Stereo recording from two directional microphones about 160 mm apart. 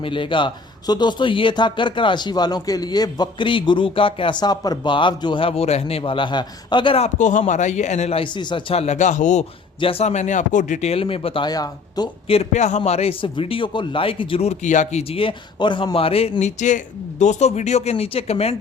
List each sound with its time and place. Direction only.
0.0 s speech: 30° left (ahead or behind)
12.3 s speech: 45° left (ahead or behind)